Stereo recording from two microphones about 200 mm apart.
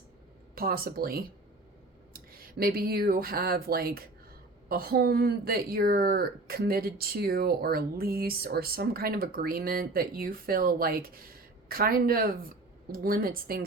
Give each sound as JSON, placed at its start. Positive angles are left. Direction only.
{"t": 0.5, "sound": "speech", "side_deg": -45}